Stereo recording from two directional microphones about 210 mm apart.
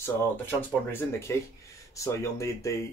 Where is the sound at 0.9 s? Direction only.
10° left (ahead or behind).